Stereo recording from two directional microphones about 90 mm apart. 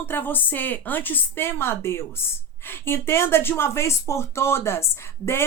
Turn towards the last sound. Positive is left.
turn(degrees=30)  # may be behind; listen again after turning